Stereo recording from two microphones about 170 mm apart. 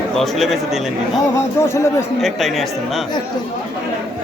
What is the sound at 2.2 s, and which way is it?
Speech, centre (ahead or behind).